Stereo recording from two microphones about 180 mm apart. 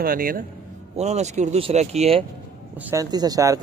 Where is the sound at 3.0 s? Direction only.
20° right (ahead or behind).